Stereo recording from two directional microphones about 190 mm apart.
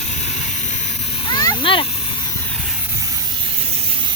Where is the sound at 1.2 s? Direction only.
20° left (ahead or behind).